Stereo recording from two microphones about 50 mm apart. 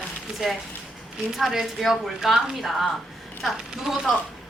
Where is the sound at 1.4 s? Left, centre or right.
Centre.